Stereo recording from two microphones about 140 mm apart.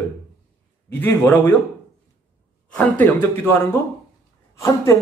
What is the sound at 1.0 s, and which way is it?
Speech, 15° left (ahead or behind).